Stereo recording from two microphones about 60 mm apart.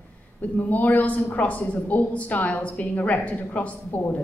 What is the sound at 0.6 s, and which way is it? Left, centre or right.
A woman's voice, left.